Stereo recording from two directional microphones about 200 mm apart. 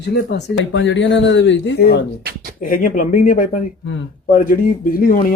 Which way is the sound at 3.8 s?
65° left (ahead or behind).